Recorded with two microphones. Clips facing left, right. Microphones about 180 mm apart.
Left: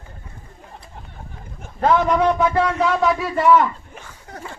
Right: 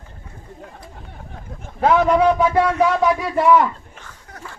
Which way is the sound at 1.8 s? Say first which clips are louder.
Right 2 dB; 10° right (ahead or behind).